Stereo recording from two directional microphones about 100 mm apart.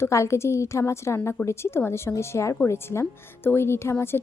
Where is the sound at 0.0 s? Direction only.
30° left (ahead or behind).